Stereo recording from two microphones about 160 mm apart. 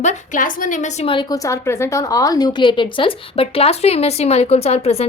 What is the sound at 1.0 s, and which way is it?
A woman's voice, 25° left (ahead or behind).